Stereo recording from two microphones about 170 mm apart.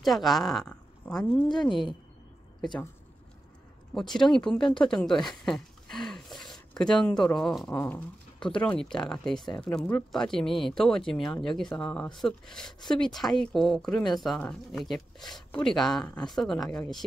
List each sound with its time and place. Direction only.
0.0 s speech: centre (ahead or behind)
1.7 s speech: 30° left (ahead or behind)
4.1 s speech: 5° left (ahead or behind)